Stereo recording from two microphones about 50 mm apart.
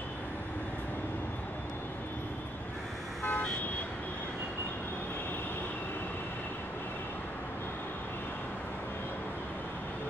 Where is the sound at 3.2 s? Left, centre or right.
Left.